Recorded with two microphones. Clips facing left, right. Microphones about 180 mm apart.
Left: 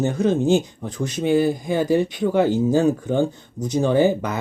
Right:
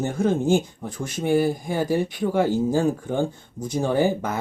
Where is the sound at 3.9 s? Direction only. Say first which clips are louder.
Left 3 dB; 20° left (ahead or behind).